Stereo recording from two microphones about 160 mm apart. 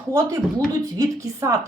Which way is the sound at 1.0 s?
25° right (ahead or behind).